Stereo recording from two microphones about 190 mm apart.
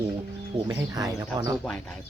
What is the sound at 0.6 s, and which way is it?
Speech, 20° right (ahead or behind).